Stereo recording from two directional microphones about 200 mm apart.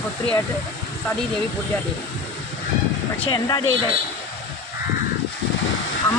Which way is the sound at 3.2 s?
20° left (ahead or behind).